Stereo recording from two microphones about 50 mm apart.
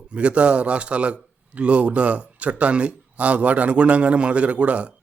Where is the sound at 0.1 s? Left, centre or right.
Right.